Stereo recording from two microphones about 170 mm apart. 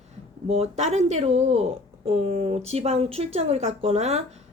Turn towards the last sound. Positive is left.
turn(degrees=-40)  # may be behind; listen again after turning